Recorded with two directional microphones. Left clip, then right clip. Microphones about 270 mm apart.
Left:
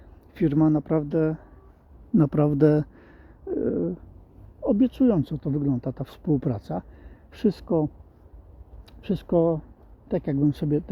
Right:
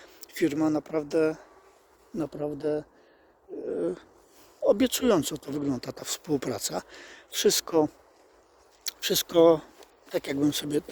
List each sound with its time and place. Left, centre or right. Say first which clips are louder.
0.3 s speech: left 4 dB; centre
2.1 s speech: left 10 dB; centre
4.6 s speech: left 1 dB; centre